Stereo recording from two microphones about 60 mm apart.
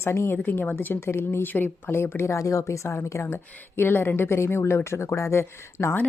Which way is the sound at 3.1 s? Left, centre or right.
Left.